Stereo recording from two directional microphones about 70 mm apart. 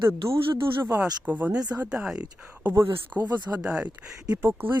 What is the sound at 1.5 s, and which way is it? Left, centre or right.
Speech, right.